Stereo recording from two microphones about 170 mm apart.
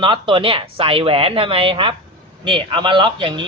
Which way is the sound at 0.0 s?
30° right (ahead or behind).